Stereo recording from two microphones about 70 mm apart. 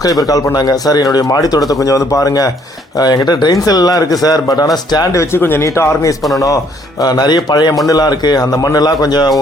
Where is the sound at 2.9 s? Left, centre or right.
Left.